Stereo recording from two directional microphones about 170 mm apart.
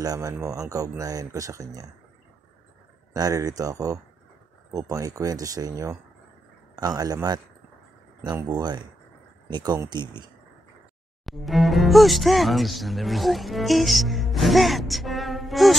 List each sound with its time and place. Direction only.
0.0 s speech: 20° right (ahead or behind)
3.1 s speech: 20° right (ahead or behind)
11.2 s speech: centre (ahead or behind)